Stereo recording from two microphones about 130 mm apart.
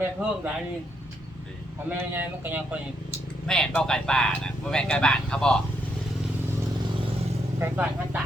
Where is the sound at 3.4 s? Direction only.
5° left (ahead or behind).